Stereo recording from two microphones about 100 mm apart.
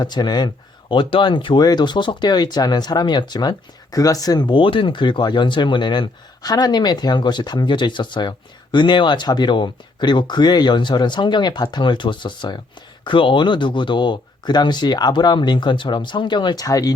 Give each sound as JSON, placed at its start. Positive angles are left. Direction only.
{"t": 0.0, "sound": "speech", "side_deg": 45}